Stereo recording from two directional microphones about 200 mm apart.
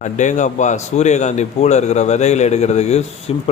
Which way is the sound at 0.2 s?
35° left (ahead or behind).